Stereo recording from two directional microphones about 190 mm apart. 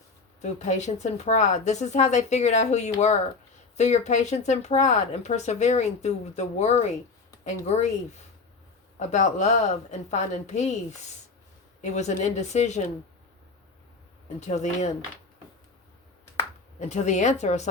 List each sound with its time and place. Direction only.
0.4 s speech: 40° left (ahead or behind)
14.3 s speech: 35° left (ahead or behind)
16.9 s speech: 40° left (ahead or behind)